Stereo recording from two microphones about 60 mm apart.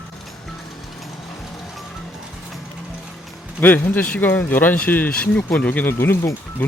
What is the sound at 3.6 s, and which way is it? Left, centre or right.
Speech, left.